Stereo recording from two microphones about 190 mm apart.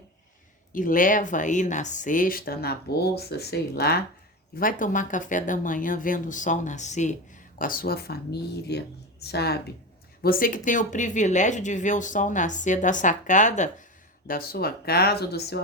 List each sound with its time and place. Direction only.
0.7 s speech: 45° left (ahead or behind)
4.5 s speech: 45° left (ahead or behind)
14.3 s speech: 50° left (ahead or behind)